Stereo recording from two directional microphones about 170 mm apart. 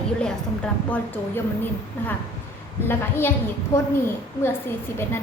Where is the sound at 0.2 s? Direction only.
5° left (ahead or behind).